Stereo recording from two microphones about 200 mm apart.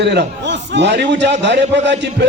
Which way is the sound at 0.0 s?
60° right (ahead or behind).